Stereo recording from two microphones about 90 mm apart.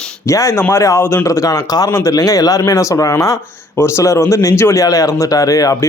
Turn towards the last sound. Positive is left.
turn(degrees=40)  # may be behind; listen again after turning